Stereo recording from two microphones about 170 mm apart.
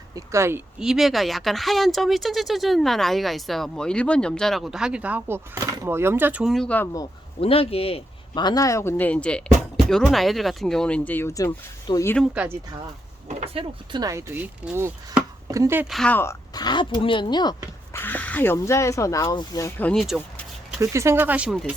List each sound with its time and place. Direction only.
0.1 s speech: 15° right (ahead or behind)
0.8 s speech: 5° right (ahead or behind)
7.3 s speech: 35° left (ahead or behind); by 12.1 s 15° left (ahead or behind)
12.1 s speech: 5° right (ahead or behind)
13.2 s speech: 35° right (ahead or behind); by 15.9 s 15° right (ahead or behind)
15.9 s speech: 5° left (ahead or behind); by 17.6 s 25° left (ahead or behind)
17.9 s speech: 10° left (ahead or behind)
19.9 s speech: centre (ahead or behind)
20.8 s speech: 15° right (ahead or behind)